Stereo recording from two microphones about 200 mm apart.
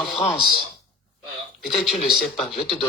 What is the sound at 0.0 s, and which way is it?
Speech, centre (ahead or behind).